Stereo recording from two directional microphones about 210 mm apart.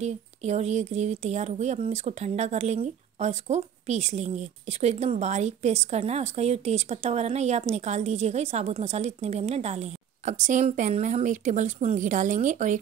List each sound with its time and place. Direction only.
0.0 s speech: 30° right (ahead or behind)